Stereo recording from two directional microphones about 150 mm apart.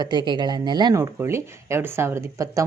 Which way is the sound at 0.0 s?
30° right (ahead or behind).